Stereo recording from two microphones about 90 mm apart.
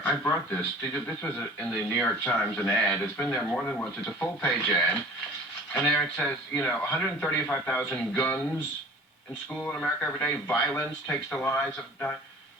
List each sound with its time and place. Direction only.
0.0 s speech: 25° left (ahead or behind)
5.8 s speech: 10° left (ahead or behind)
9.6 s speech: 15° left (ahead or behind)